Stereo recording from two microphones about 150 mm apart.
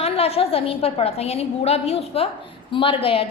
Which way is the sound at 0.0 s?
40° left (ahead or behind).